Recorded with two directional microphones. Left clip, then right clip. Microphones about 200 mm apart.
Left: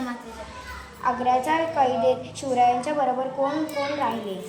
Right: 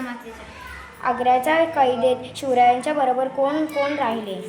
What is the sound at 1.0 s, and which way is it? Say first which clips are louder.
A woman's voice: right 4 dB; 50° right (ahead or behind).